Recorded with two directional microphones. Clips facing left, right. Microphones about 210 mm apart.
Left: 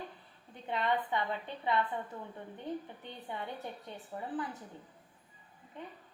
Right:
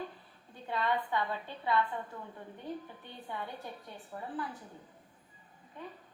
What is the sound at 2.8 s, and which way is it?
A woman's voice, 20° left (ahead or behind).